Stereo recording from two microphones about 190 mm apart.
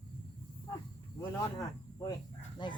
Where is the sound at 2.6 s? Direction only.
25° left (ahead or behind).